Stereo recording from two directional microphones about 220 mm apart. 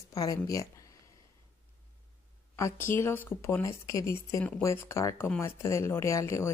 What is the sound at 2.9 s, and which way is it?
Speech, 10° left (ahead or behind).